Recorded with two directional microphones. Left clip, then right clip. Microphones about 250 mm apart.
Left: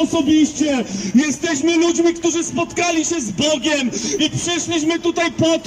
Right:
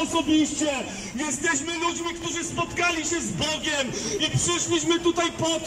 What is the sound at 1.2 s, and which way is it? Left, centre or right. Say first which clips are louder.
A man's voice: left 7 dB; left.